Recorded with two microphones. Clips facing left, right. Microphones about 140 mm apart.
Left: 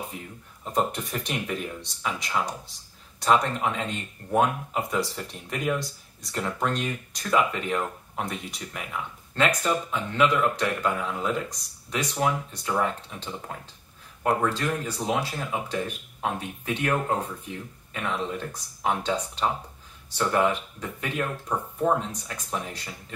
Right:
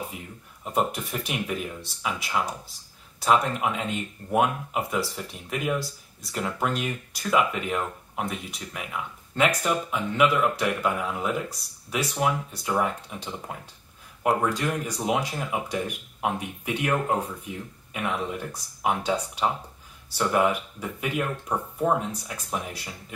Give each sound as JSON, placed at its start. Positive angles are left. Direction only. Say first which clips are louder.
{"t": 0.7, "sound": "speech", "louder": "even", "side_deg": -10}